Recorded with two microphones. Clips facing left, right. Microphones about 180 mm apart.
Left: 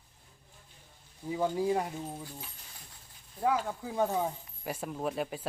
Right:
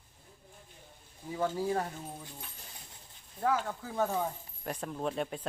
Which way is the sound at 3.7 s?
15° left (ahead or behind).